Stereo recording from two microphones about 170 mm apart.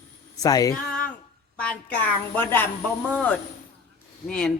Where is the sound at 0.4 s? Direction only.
20° left (ahead or behind).